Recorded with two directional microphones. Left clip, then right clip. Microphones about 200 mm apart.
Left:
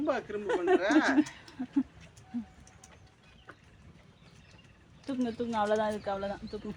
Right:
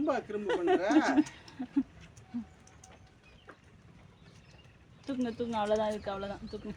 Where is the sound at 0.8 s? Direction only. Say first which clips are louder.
Left 1 dB; 55° right (ahead or behind).